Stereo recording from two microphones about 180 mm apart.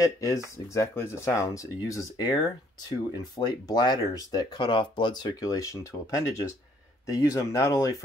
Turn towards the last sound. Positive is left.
turn(degrees=15)  # may be behind; listen again after turning